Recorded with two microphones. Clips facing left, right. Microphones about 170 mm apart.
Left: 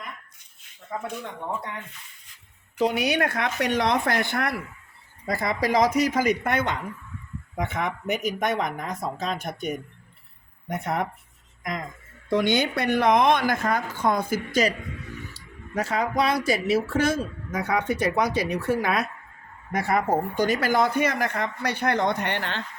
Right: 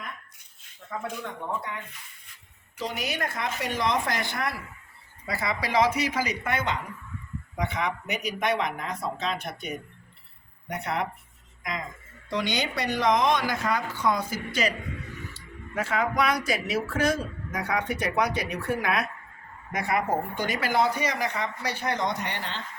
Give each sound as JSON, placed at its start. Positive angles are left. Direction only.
{"t": 2.7, "sound": "speech", "side_deg": 65}
{"t": 5.2, "sound": "a woman's voice", "side_deg": 45}
{"t": 15.3, "sound": "a sound", "side_deg": 40}
{"t": 16.5, "sound": "speech", "side_deg": 25}
{"t": 19.7, "sound": "speech", "side_deg": 35}